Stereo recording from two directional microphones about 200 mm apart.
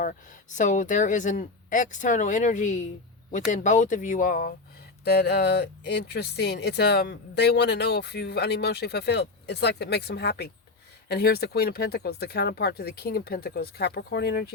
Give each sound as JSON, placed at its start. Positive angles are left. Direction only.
{"t": 0.0, "sound": "speech", "side_deg": 40}